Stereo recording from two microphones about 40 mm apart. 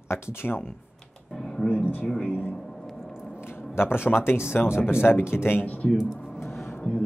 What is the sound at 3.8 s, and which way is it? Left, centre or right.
Speech, left.